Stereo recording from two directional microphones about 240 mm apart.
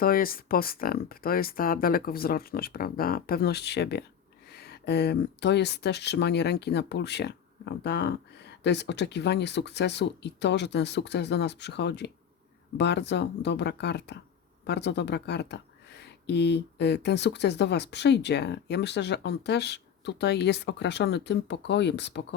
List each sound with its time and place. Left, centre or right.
0.0 s speech: left